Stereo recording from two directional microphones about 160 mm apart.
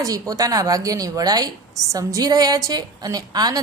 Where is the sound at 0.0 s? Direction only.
20° right (ahead or behind).